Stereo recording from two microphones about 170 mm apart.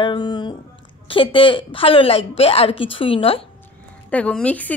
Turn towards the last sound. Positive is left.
turn(degrees=10)  # may be behind; listen again after turning